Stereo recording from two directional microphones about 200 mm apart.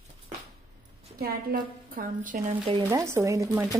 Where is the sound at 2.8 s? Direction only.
15° right (ahead or behind).